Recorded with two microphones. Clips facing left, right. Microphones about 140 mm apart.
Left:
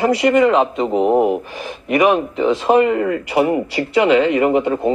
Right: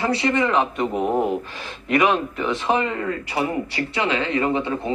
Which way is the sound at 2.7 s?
40° left (ahead or behind).